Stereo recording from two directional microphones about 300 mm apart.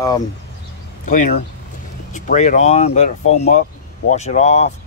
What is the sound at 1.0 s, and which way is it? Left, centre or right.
Speech, left.